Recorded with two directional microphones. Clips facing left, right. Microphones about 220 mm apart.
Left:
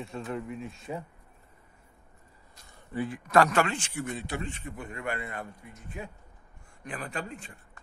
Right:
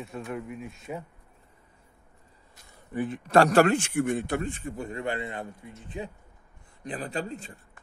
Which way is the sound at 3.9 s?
55° right (ahead or behind).